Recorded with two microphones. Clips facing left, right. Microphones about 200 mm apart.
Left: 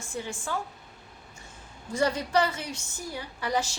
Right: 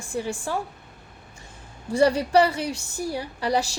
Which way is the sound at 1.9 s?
35° right (ahead or behind).